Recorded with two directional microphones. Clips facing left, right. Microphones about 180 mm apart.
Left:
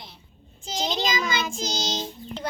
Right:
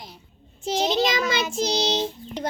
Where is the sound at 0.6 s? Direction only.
60° right (ahead or behind).